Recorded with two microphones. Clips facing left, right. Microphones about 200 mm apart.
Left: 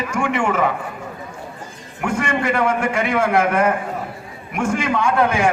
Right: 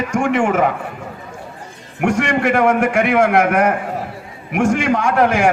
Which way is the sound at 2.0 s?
75° right (ahead or behind).